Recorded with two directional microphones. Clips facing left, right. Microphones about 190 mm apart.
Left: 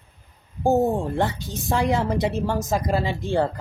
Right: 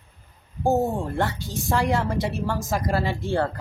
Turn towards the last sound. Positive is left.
turn(degrees=15)  # may be behind; listen again after turning